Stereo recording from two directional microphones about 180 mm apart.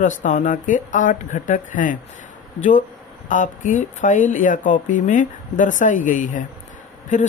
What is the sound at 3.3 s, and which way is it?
Speech, 45° left (ahead or behind).